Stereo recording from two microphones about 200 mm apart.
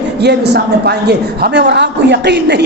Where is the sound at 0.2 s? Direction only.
55° right (ahead or behind).